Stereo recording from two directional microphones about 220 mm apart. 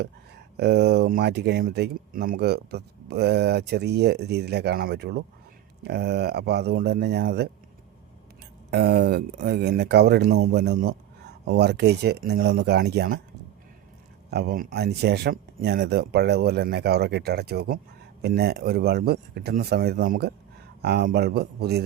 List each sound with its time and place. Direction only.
0.5 s speech: 50° right (ahead or behind)
8.7 s speech: 50° right (ahead or behind)
14.3 s speech: 45° right (ahead or behind)